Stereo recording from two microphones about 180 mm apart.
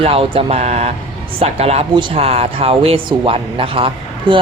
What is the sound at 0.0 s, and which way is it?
Speech, 30° right (ahead or behind).